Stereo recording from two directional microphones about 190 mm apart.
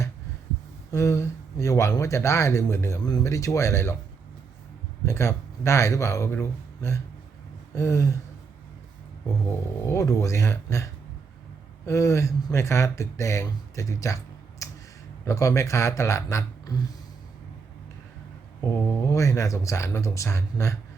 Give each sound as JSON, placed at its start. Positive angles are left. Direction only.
{"t": 0.9, "sound": "speech", "side_deg": 15}
{"t": 5.0, "sound": "speech", "side_deg": 15}
{"t": 9.8, "sound": "speech", "side_deg": 15}
{"t": 11.9, "sound": "speech", "side_deg": 15}
{"t": 14.6, "sound": "a sound", "side_deg": 15}
{"t": 15.2, "sound": "speech", "side_deg": 15}
{"t": 18.9, "sound": "speech", "side_deg": 15}